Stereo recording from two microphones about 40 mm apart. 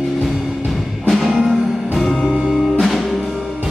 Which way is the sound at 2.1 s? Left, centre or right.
Centre.